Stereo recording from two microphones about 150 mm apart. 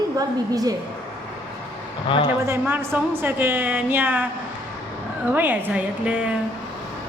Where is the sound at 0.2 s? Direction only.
25° right (ahead or behind).